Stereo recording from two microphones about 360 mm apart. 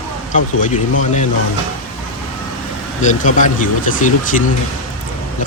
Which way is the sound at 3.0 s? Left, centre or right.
Left.